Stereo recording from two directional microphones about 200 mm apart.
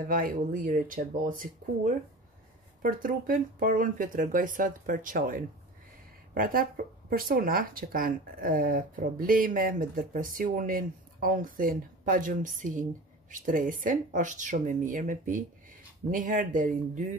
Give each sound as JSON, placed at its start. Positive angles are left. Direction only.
{"t": 0.0, "sound": "speech", "side_deg": -45}
{"t": 2.8, "sound": "speech", "side_deg": -45}